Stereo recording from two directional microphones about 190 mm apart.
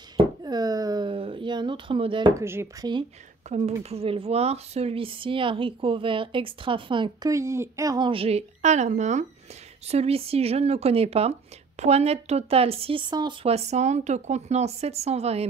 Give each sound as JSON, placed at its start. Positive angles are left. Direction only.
{"t": 0.4, "sound": "a sound", "side_deg": -20}
{"t": 2.4, "sound": "speech", "side_deg": -15}
{"t": 3.4, "sound": "speech", "side_deg": -40}